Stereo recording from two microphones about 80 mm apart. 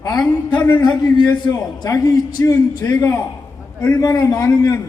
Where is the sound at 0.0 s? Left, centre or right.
Left.